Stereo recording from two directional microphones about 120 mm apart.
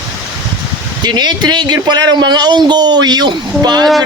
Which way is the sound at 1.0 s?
35° right (ahead or behind).